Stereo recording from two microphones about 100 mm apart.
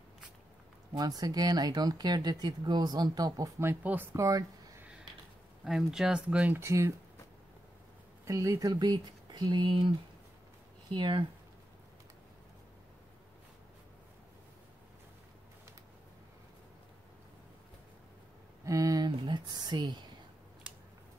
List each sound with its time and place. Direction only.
0.9 s speech: 40° right (ahead or behind)
3.8 s speech: 20° right (ahead or behind)
4.1 s speech: 35° right (ahead or behind)
5.6 s speech: 5° right (ahead or behind)
6.5 s speech: 25° right (ahead or behind)
8.3 s speech: 30° right (ahead or behind); by 9.8 s 60° right (ahead or behind)
11.0 s speech: 60° right (ahead or behind)
18.6 s a sound: 35° right (ahead or behind)
19.2 s speech: 50° right (ahead or behind)